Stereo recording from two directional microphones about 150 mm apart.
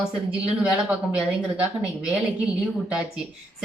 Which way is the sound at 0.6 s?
10° right (ahead or behind).